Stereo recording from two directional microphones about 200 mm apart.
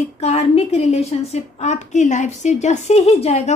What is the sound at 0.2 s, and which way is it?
A woman's voice, 30° left (ahead or behind).